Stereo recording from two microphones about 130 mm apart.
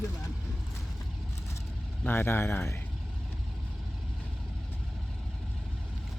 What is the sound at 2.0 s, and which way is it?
Speech, 20° left (ahead or behind).